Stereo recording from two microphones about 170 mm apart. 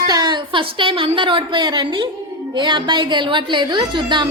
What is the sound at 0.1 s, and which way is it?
A woman's voice, 25° right (ahead or behind).